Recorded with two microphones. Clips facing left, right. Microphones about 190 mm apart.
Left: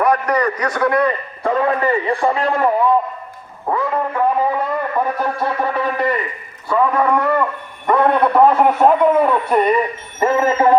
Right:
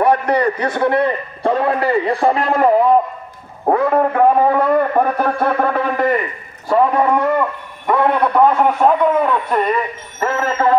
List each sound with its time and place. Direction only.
0.0 s a man's voice: 30° right (ahead or behind)
3.6 s speech: 55° right (ahead or behind)
6.7 s a man's voice: 30° right (ahead or behind)
7.1 s a man's voice: 5° right (ahead or behind); by 10.8 s 15° left (ahead or behind)